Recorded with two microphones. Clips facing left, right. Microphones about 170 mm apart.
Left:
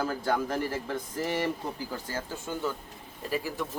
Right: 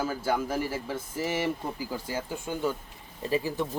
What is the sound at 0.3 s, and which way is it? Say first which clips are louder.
Speech: right 1 dB; 5° right (ahead or behind).